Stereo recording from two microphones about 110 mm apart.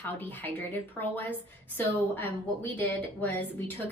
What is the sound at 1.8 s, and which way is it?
A woman's voice, 20° left (ahead or behind).